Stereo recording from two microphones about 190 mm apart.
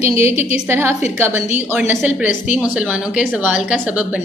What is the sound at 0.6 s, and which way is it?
A woman's voice, 10° right (ahead or behind).